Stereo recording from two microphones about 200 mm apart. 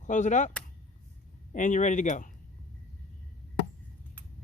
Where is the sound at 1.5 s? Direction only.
40° left (ahead or behind).